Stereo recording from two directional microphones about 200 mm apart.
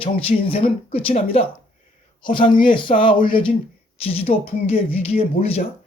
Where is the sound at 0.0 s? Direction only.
30° left (ahead or behind).